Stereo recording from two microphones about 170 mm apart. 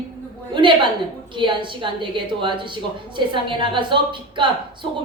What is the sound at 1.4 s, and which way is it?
A woman's voice, 30° right (ahead or behind).